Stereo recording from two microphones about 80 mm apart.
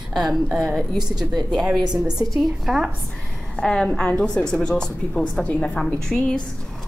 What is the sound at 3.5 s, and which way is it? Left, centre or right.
A woman's voice, centre.